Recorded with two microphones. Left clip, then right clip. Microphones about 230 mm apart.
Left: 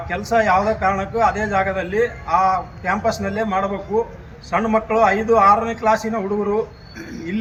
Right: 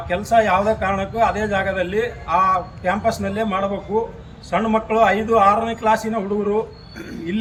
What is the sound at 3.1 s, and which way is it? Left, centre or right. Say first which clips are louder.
A man's voice: even; right.